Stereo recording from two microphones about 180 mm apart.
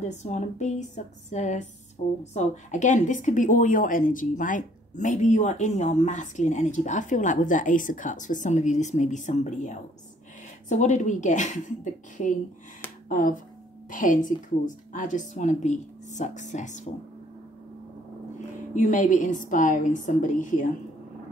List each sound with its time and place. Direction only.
0.0 s a woman's voice: 40° left (ahead or behind)
18.8 s a woman's voice: 45° left (ahead or behind)